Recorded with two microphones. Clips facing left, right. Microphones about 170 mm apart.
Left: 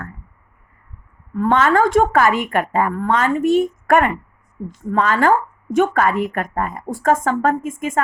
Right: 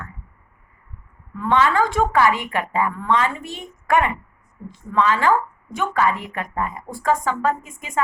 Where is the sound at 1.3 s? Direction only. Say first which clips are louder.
Left 3 dB; 45° left (ahead or behind).